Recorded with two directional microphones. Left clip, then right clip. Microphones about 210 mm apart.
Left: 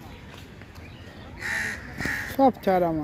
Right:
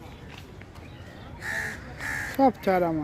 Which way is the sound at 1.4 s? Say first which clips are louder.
Left 3 dB; 40° right (ahead or behind).